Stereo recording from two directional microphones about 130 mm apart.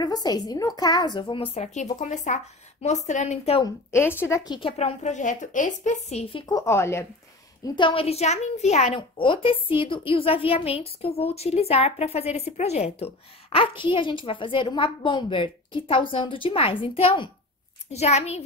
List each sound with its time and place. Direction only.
0.0 s a woman's voice: 30° left (ahead or behind)
1.6 s a woman's voice: 65° left (ahead or behind)
3.9 s speech: 20° left (ahead or behind)
4.5 s a woman's voice: 45° left (ahead or behind); by 6.2 s 65° left (ahead or behind)
6.5 s speech: 20° left (ahead or behind)
7.6 s a woman's voice: 35° left (ahead or behind); by 18.4 s 55° left (ahead or behind)